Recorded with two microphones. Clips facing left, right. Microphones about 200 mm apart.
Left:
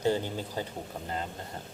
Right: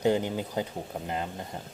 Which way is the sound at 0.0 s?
15° right (ahead or behind).